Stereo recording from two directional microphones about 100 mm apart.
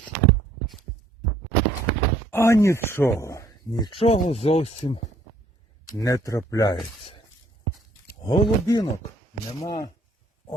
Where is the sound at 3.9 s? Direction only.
90° left.